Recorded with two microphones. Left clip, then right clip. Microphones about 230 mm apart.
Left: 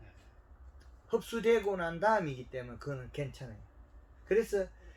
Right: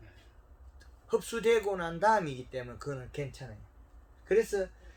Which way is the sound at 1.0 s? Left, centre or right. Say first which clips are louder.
Right 2 dB; right.